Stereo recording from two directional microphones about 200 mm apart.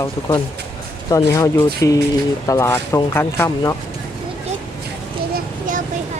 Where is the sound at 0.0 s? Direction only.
20° left (ahead or behind).